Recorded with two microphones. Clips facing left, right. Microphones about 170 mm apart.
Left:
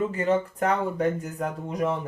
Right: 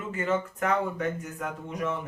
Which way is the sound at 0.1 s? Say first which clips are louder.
Left 4 dB; 35° left (ahead or behind).